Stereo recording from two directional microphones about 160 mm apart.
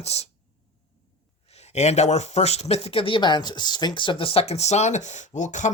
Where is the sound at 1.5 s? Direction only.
45° left (ahead or behind).